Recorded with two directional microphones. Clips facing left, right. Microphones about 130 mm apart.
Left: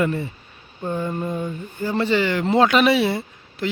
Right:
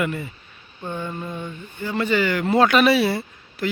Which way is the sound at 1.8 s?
35° left (ahead or behind).